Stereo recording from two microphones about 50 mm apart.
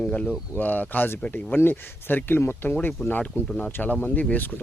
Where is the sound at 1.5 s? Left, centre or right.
Left.